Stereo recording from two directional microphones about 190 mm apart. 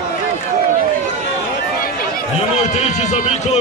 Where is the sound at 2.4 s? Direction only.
35° left (ahead or behind).